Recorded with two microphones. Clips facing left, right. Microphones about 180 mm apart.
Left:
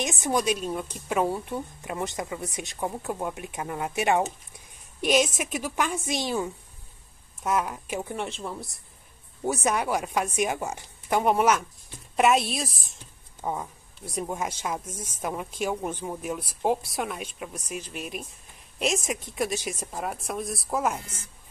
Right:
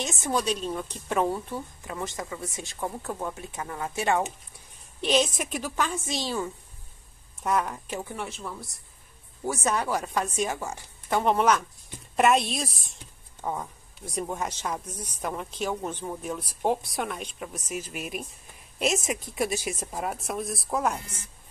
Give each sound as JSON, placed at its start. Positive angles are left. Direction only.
{"t": 0.0, "sound": "speech", "side_deg": 15}
{"t": 7.4, "sound": "speech", "side_deg": 5}
{"t": 8.0, "sound": "speech", "side_deg": 20}